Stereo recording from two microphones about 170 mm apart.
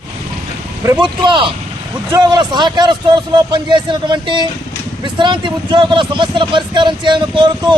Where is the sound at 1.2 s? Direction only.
30° right (ahead or behind).